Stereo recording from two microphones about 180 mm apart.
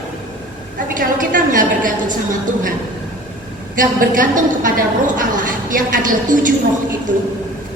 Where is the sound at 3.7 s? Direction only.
50° right (ahead or behind).